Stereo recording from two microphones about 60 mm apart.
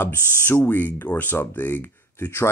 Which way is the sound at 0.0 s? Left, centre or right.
Left.